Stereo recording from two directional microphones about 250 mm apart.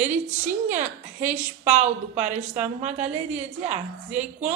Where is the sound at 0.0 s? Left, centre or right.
Right.